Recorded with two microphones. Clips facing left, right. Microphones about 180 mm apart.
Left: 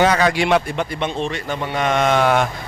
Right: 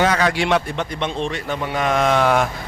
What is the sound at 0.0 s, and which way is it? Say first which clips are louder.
Speech: left 2 dB; 15° left (ahead or behind).